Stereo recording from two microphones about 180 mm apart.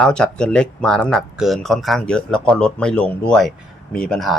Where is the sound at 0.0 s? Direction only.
5° left (ahead or behind).